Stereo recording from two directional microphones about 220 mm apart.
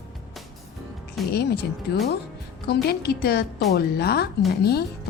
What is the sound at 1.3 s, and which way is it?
Speech, 45° left (ahead or behind).